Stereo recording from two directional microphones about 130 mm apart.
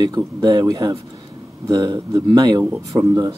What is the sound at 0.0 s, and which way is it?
Speech, 30° right (ahead or behind).